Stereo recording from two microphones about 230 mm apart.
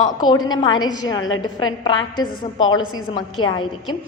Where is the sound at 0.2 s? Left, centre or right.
Centre.